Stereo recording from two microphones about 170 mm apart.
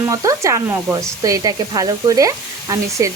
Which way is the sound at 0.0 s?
20° right (ahead or behind).